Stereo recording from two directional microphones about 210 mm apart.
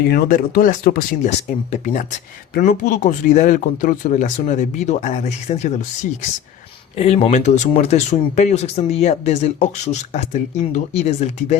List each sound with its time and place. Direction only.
0.0 s speech: 45° left (ahead or behind)